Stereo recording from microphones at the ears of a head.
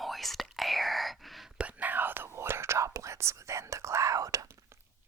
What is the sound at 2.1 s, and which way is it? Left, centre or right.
Whispering, right.